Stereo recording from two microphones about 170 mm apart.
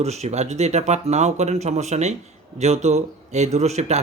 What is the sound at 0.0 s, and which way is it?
Speech, 40° right (ahead or behind).